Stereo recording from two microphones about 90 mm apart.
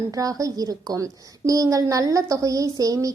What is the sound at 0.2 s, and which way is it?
A woman's voice, 40° right (ahead or behind).